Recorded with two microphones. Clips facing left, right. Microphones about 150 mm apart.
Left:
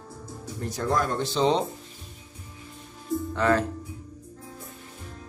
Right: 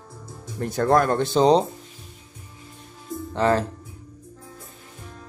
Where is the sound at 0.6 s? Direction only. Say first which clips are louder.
Right 7 dB; 60° right (ahead or behind).